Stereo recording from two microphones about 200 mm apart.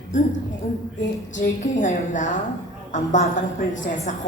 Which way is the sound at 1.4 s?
40° left (ahead or behind).